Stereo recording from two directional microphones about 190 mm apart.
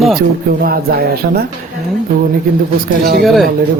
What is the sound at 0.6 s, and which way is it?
Speech, 50° right (ahead or behind).